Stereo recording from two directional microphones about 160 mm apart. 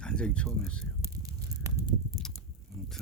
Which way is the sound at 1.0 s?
20° right (ahead or behind).